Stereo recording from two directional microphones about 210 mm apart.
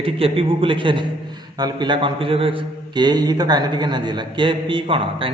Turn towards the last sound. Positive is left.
turn(degrees=-25)  # may be behind; listen again after turning